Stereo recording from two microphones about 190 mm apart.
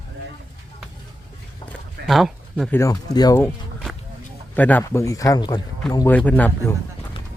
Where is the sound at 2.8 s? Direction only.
20° left (ahead or behind).